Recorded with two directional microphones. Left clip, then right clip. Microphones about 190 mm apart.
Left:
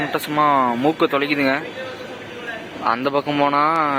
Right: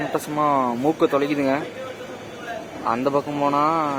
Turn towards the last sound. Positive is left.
turn(degrees=5)  # may be behind; listen again after turning